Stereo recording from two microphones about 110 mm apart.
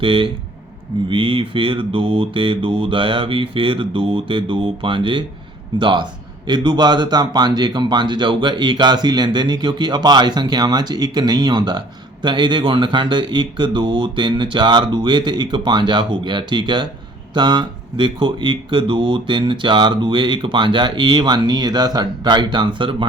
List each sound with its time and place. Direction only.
0.0 s speech: 50° right (ahead or behind)